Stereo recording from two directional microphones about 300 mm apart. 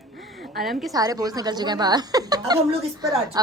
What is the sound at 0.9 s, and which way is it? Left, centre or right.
A woman's voice, centre.